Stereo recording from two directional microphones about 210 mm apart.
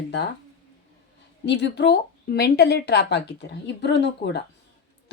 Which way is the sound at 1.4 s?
55° left (ahead or behind).